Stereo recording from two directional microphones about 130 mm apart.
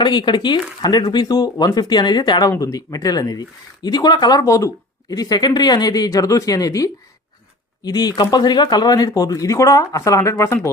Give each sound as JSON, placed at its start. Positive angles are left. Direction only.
{"t": 0.0, "sound": "speech", "side_deg": 35}